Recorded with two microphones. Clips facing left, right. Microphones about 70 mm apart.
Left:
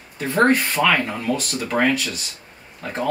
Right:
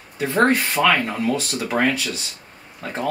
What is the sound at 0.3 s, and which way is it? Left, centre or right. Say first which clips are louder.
Speech: left 1 dB; centre.